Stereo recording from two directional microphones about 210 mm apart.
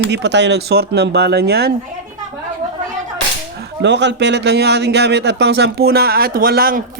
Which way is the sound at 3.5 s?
55° right (ahead or behind).